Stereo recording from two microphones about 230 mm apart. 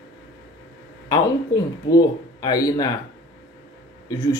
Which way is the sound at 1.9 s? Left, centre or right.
Centre.